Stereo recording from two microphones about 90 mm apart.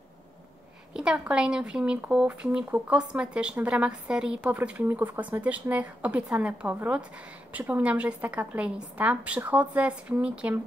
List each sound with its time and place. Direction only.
0.9 s a woman's voice: 10° right (ahead or behind)